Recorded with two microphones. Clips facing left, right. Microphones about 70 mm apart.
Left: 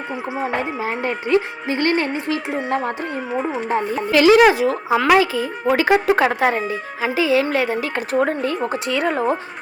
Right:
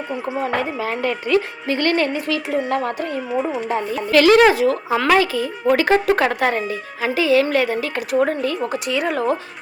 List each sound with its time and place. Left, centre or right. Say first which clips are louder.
0.4 s speech: even; left
4.1 s speech: even; centre
4.5 s speech: even; left
9.1 s speech: even; left